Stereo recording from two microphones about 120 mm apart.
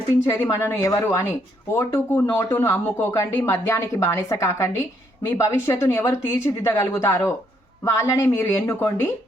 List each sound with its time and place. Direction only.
0.3 s speech: 25° left (ahead or behind)
2.3 s speech: 25° left (ahead or behind)